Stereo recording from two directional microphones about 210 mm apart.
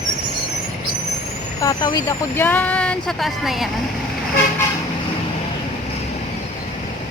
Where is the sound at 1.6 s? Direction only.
20° left (ahead or behind).